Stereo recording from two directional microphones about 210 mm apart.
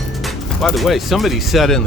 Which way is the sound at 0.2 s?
Centre (ahead or behind).